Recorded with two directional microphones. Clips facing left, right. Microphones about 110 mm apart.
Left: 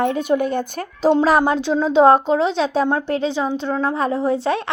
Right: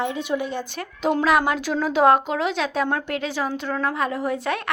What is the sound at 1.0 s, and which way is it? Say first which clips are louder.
Speech: left 5 dB; 30° left (ahead or behind).